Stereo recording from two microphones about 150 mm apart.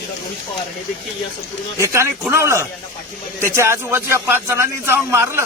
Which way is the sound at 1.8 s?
20° right (ahead or behind).